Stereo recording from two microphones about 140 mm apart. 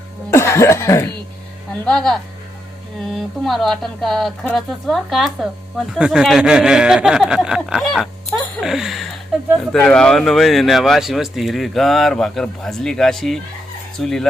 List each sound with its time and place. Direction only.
0.3 s speech: 20° left (ahead or behind)
1.7 s speech: 10° left (ahead or behind)
9.3 s a sound: centre (ahead or behind)
9.7 s speech: 5° left (ahead or behind)